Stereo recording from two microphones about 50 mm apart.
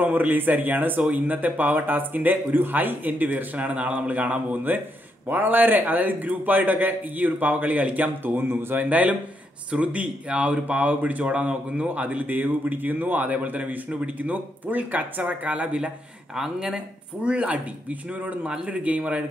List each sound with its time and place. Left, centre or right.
0.0 s speech: right
8.8 s speech: right